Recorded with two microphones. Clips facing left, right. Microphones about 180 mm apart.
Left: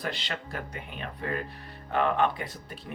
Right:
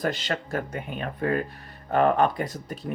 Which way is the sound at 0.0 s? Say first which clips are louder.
Right 7 dB; 45° right (ahead or behind).